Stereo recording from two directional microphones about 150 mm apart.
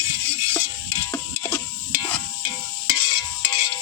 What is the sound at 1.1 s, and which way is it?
Stir, 15° left (ahead or behind).